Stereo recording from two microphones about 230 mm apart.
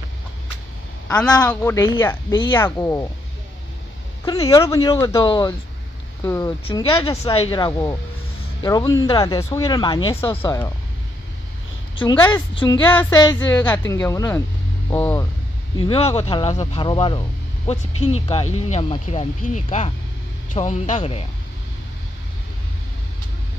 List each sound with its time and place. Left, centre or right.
1.4 s speech: centre
4.2 s speech: centre
11.9 s a sound: left
12.5 s speech: left
16.1 s speech: left
17.9 s speech: left
18.2 s speech: left